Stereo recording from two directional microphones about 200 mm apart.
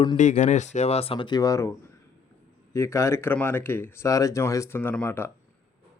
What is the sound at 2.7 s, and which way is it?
Speech, 15° left (ahead or behind).